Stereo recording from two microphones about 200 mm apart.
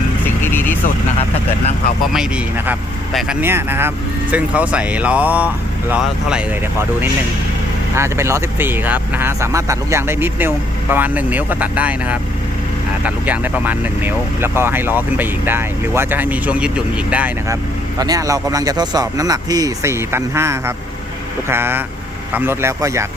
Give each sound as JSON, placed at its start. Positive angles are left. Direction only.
{"t": 0.4, "sound": "vehicle", "side_deg": 10}
{"t": 2.1, "sound": "speech", "side_deg": -5}
{"t": 18.0, "sound": "speech", "side_deg": -20}